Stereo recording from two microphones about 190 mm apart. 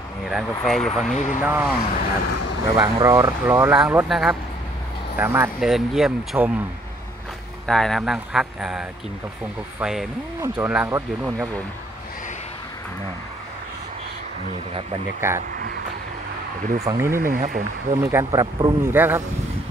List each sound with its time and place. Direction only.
0.3 s speech: centre (ahead or behind)
7.6 s speech: centre (ahead or behind); by 11.4 s 15° right (ahead or behind)
14.7 s speech: 30° right (ahead or behind)
15.1 s speech: 15° right (ahead or behind)
16.8 s speech: 15° right (ahead or behind)
17.2 s speech: 45° right (ahead or behind)
17.9 s speech: 15° right (ahead or behind)